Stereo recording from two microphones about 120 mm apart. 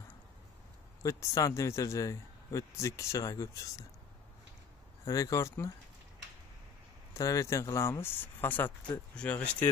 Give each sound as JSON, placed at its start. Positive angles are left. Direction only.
{"t": 1.0, "sound": "a man's voice", "side_deg": 25}
{"t": 5.0, "sound": "a man's voice", "side_deg": 25}
{"t": 7.2, "sound": "a man's voice", "side_deg": 25}